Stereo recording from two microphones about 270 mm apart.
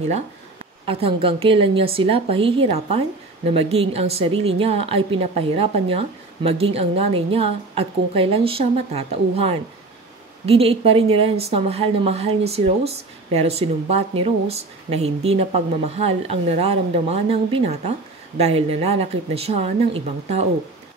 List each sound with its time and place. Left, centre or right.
0.8 s speech: right